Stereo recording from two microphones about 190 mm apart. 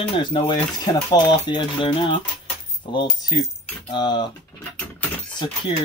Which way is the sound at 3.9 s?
25° left (ahead or behind).